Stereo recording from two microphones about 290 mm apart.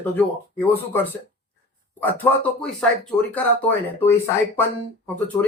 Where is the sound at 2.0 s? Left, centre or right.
Centre.